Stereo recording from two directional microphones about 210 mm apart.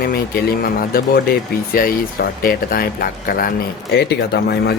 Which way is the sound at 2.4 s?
45° left (ahead or behind).